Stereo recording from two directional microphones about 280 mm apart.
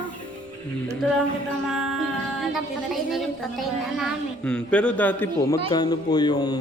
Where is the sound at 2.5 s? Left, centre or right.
Centre.